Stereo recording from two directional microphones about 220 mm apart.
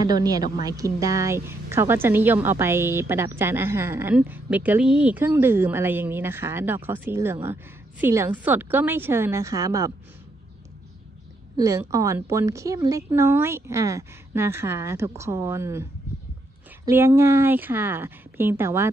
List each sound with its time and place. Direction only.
0.0 s a woman's voice: 15° right (ahead or behind)
11.5 s a woman's voice: 15° right (ahead or behind)